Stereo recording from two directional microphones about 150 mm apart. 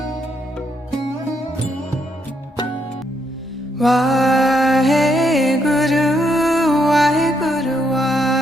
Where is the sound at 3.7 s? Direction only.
Centre (ahead or behind).